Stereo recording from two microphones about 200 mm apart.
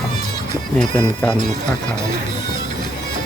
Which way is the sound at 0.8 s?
5° left (ahead or behind).